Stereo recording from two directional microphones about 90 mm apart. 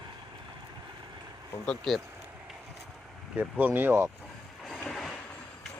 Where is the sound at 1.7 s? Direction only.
5° left (ahead or behind).